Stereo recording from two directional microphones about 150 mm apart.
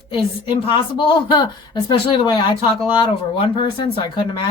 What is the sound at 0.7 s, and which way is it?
Speech, 30° left (ahead or behind).